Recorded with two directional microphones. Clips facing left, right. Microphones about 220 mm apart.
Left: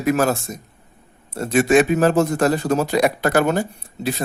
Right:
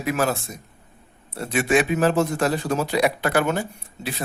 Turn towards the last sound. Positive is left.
turn(degrees=40)  # may be behind; listen again after turning